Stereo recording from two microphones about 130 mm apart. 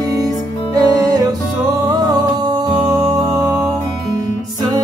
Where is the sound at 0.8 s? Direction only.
30° right (ahead or behind).